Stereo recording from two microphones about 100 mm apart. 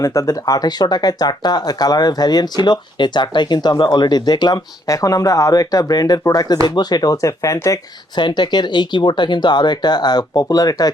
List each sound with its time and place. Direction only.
0.0 s speech: 30° left (ahead or behind)
8.1 s speech: 50° left (ahead or behind)